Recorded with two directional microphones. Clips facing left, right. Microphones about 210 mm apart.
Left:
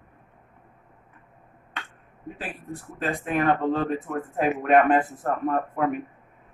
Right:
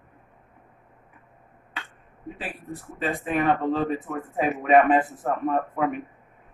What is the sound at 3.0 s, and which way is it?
Speech, centre (ahead or behind).